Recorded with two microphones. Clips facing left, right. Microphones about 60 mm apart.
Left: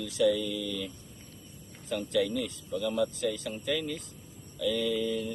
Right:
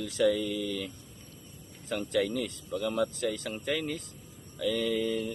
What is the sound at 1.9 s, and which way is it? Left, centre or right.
Speech, right.